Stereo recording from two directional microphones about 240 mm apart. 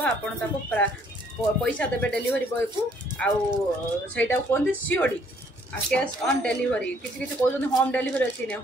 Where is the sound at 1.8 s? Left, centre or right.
Centre.